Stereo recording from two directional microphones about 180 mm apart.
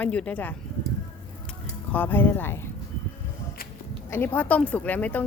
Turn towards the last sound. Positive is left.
turn(degrees=10)  # may be behind; listen again after turning